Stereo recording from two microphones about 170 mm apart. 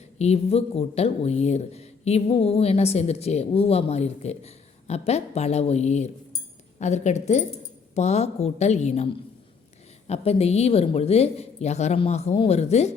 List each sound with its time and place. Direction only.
0.2 s speech: 40° left (ahead or behind)
10.1 s speech: 35° left (ahead or behind)